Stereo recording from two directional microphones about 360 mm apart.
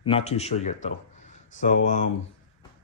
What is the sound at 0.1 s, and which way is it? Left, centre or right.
A man's voice, centre.